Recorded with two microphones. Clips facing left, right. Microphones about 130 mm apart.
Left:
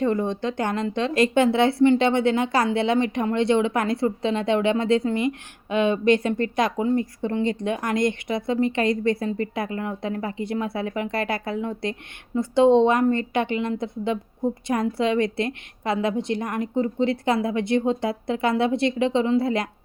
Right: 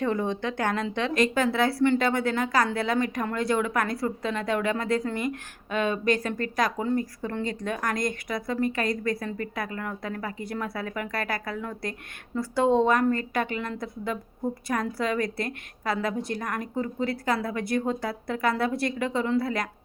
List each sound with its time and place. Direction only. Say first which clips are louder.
0.0 s speech: left 4 dB; 15° left (ahead or behind)
1.1 s a woman's voice: left 5 dB; 25° left (ahead or behind)